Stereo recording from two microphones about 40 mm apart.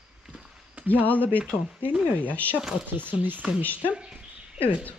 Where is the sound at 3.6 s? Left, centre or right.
Left.